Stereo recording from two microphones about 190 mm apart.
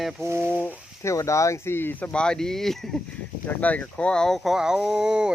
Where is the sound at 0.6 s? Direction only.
10° left (ahead or behind).